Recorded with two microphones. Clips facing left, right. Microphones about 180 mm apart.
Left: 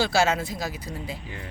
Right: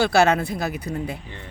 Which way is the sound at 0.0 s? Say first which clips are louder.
Right 5 dB; 60° right (ahead or behind).